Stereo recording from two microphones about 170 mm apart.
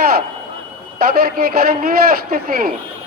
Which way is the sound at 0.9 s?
65° right (ahead or behind).